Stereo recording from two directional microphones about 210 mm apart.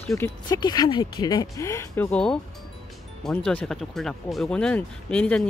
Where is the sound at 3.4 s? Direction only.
5° left (ahead or behind).